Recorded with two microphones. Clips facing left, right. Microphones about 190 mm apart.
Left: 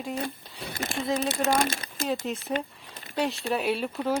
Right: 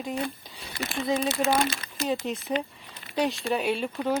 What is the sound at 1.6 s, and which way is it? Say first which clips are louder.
Speech: even; 50° left (ahead or behind).